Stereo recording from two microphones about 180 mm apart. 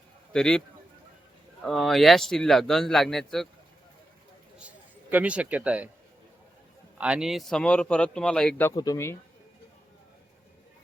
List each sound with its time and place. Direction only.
0.3 s speech: 5° left (ahead or behind)
1.6 s speech: centre (ahead or behind)
5.1 s speech: 5° right (ahead or behind)
7.0 s speech: 5° right (ahead or behind)
8.7 s speech: 20° left (ahead or behind)